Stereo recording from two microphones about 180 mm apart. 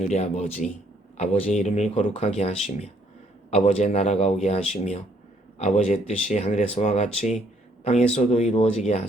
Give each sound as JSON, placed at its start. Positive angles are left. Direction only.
{"t": 0.0, "sound": "speech", "side_deg": 40}